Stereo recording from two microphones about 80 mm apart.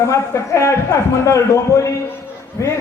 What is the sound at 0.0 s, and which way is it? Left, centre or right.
A man's voice, left.